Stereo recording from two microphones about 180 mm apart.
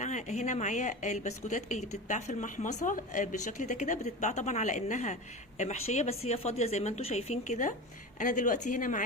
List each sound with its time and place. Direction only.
0.0 s a woman's voice: 40° left (ahead or behind)